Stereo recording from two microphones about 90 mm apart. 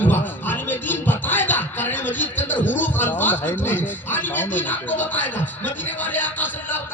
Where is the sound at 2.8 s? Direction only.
20° left (ahead or behind).